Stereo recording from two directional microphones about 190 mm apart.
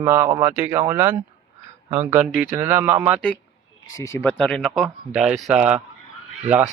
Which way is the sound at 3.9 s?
15° left (ahead or behind).